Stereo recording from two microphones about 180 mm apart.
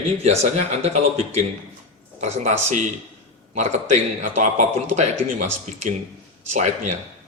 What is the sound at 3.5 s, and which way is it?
A man's voice, 40° right (ahead or behind).